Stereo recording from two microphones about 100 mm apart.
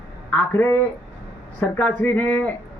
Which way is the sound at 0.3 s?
20° left (ahead or behind).